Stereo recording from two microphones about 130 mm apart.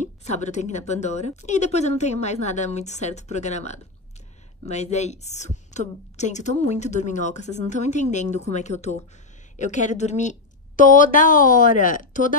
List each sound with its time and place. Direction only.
0.0 s a woman's voice: 65° left (ahead or behind)
10.8 s a woman's voice: 90° left